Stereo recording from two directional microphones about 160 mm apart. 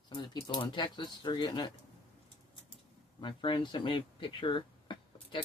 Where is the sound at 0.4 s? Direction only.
30° left (ahead or behind).